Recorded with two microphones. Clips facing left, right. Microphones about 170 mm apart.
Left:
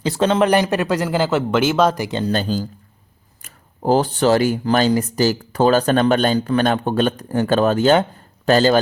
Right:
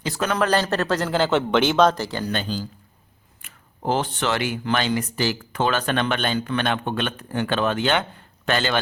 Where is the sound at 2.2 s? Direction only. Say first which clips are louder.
Left 6 dB; 35° left (ahead or behind).